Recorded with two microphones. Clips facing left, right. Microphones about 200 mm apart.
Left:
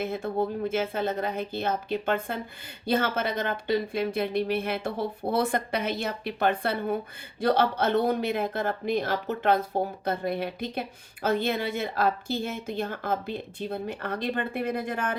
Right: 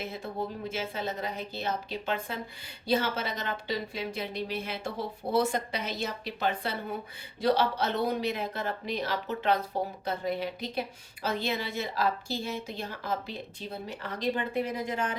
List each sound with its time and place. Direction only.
0.0 s speech: 55° left (ahead or behind)